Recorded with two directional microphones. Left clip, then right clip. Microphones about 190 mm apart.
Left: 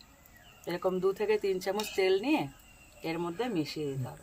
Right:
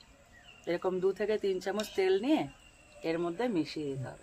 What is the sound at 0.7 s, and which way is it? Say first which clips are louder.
Speech: left 1 dB; 15° right (ahead or behind).